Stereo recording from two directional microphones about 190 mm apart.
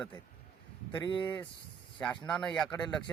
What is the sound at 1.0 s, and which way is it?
Speech, 25° left (ahead or behind).